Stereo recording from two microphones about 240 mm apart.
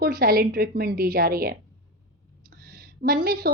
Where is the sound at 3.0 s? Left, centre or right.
Right.